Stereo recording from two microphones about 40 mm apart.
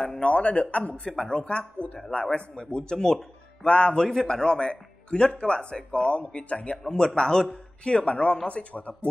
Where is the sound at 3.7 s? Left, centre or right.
Left.